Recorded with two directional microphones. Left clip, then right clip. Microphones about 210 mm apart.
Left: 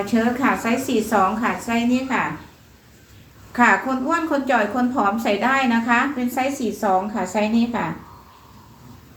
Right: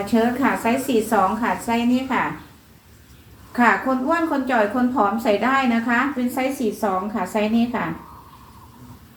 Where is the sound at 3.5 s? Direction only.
20° left (ahead or behind).